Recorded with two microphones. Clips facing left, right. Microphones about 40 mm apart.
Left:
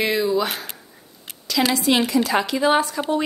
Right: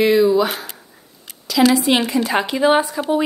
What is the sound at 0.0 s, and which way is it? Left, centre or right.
Speech, centre.